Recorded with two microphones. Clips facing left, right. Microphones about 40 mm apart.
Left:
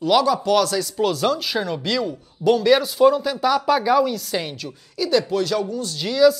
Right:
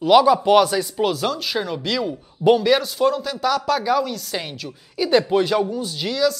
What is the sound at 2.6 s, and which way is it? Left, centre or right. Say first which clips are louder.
Speech: left 3 dB; centre.